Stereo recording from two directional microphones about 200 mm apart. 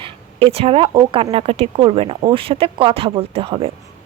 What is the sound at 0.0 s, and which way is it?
Speech, 30° right (ahead or behind).